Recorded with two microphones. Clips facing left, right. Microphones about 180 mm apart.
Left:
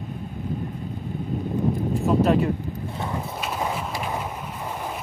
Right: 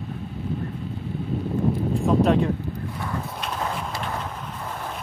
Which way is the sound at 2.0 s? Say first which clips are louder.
Even; 5° left (ahead or behind).